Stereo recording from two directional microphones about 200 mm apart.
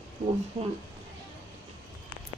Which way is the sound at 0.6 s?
35° right (ahead or behind).